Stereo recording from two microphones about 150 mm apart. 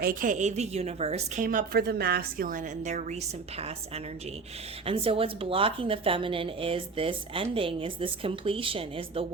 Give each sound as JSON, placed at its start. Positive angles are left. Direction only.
{"t": 0.0, "sound": "a woman's voice", "side_deg": -65}
{"t": 1.5, "sound": "a woman's voice", "side_deg": -80}